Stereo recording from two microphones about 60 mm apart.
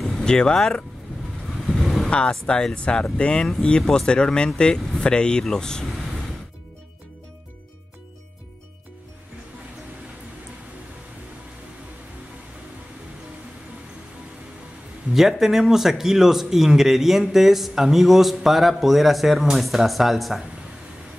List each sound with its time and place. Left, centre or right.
0.2 s speech: centre
1.7 s vehicle: centre
2.0 s speech: centre
15.1 s speech: centre